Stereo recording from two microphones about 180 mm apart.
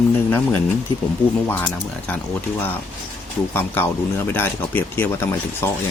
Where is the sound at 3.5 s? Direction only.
10° left (ahead or behind).